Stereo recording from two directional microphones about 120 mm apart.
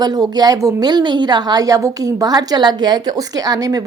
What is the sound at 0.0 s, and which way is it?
A woman's voice, 35° right (ahead or behind).